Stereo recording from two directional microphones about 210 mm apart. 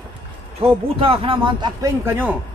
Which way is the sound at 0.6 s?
25° right (ahead or behind).